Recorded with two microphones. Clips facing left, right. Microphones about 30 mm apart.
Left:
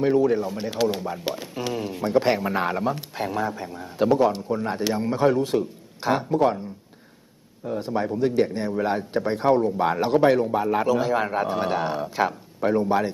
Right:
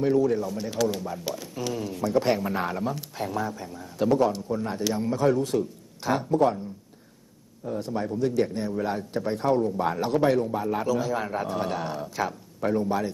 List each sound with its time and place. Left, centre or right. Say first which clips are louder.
0.0 s a man's voice: left 3 dB; left
7.6 s a man's voice: left 4 dB; left